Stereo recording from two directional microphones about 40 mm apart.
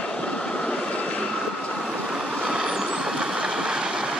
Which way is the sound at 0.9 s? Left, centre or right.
Left.